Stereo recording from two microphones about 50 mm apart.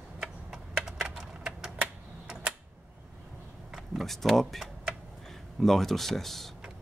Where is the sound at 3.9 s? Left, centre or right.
Centre.